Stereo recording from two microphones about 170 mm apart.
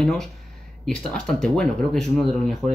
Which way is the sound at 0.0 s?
5° left (ahead or behind).